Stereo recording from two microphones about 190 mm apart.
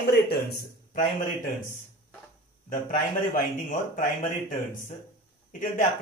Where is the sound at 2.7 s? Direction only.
45° left (ahead or behind).